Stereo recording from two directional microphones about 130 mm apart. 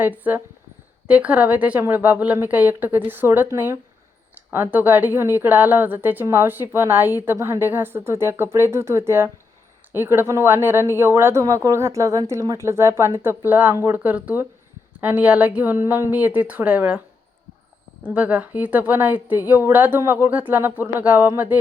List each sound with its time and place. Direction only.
0.0 s a woman's voice: 15° right (ahead or behind)
18.0 s a woman's voice: 10° right (ahead or behind)